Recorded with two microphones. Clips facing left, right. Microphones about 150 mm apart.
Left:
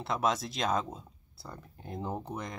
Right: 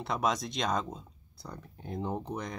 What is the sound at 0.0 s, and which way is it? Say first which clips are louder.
Speech: even; centre (ahead or behind).